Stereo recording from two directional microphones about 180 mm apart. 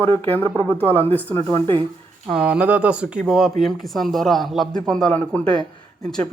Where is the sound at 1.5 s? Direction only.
25° right (ahead or behind).